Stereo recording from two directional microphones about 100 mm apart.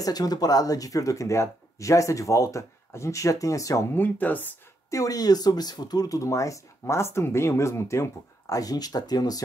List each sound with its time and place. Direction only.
0.0 s speech: 40° left (ahead or behind)
4.0 s speech: 20° left (ahead or behind)
4.9 s speech: 35° left (ahead or behind)